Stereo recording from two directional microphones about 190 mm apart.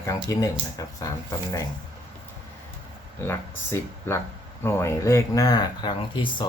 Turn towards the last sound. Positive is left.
turn(degrees=25)  # may be behind; listen again after turning